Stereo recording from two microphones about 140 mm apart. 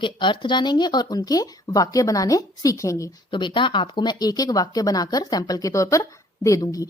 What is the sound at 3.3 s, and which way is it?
Speech, 35° left (ahead or behind).